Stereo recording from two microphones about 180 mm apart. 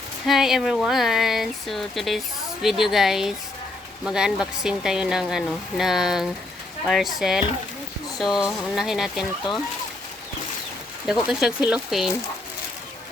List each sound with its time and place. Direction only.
0.3 s speech: centre (ahead or behind)
11.0 s speech: 5° right (ahead or behind)